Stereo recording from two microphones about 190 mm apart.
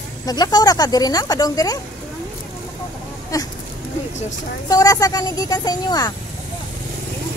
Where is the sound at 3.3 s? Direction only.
20° left (ahead or behind).